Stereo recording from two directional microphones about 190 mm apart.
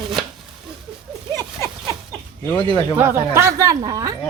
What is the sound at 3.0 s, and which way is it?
Speech, 15° right (ahead or behind).